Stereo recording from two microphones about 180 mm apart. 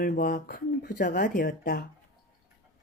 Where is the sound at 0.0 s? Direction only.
50° left (ahead or behind).